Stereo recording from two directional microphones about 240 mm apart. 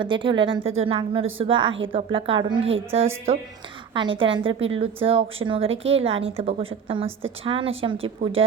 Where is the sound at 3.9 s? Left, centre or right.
Right.